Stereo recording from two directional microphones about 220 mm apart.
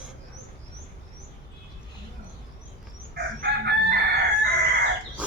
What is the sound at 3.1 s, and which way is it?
Chicken, 45° right (ahead or behind).